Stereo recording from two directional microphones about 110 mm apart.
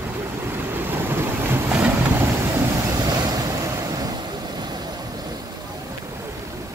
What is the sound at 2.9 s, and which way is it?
Waves, 35° right (ahead or behind).